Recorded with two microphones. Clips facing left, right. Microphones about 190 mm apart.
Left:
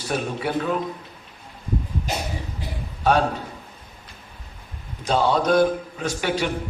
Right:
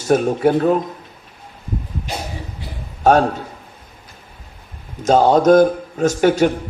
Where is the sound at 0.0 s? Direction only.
45° right (ahead or behind).